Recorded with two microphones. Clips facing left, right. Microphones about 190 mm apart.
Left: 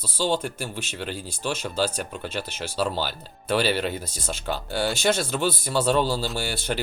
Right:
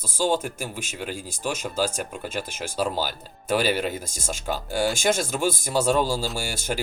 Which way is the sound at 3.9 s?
45° right (ahead or behind).